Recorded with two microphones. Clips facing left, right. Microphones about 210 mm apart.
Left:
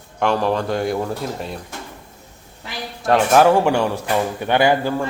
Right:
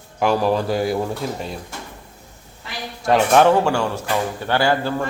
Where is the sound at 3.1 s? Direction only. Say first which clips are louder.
Left 1 dB; 5° left (ahead or behind).